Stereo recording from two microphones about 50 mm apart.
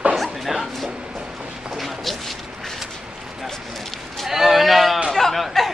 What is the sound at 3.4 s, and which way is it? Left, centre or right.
Speech, centre.